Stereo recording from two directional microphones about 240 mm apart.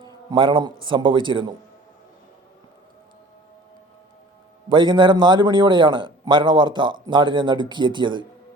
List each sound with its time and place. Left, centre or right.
0.3 s a man's voice: centre
4.7 s a man's voice: centre